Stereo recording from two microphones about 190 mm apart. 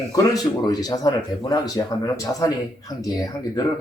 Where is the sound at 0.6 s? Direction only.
20° left (ahead or behind).